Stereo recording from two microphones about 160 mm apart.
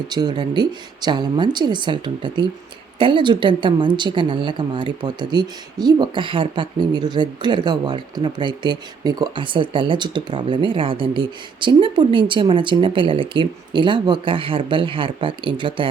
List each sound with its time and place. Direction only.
0.1 s a woman's voice: 25° right (ahead or behind)